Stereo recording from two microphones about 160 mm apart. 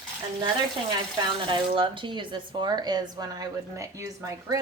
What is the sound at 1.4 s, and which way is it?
Speech, 30° right (ahead or behind).